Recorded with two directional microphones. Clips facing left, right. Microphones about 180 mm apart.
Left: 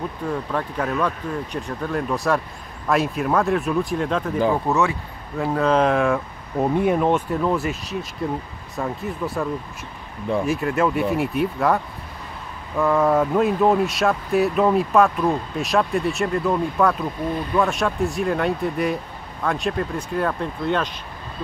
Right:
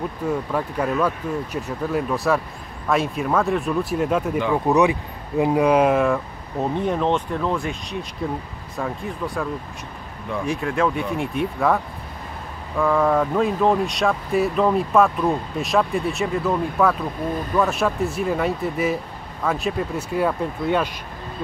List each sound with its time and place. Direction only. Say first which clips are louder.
0.3 s speech: right 2 dB; 5° right (ahead or behind)